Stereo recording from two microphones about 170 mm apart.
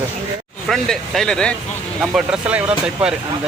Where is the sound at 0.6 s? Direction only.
5° left (ahead or behind).